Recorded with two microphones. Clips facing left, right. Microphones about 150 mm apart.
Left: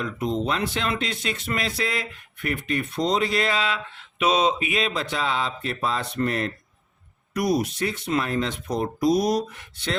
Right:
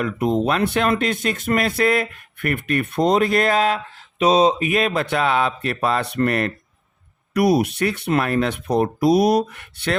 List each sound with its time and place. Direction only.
0.0 s speech: 60° right (ahead or behind); by 4.7 s 35° right (ahead or behind)
4.7 s speech: 55° right (ahead or behind)